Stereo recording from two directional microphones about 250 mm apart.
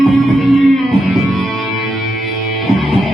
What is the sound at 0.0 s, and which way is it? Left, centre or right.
Music, centre.